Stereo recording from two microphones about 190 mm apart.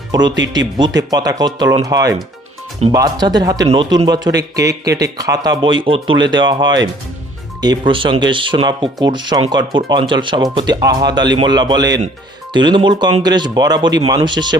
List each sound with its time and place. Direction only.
0.1 s speech: 20° right (ahead or behind)